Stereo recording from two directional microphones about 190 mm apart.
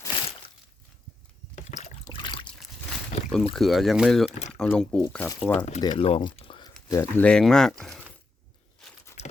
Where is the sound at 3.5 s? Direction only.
Centre (ahead or behind).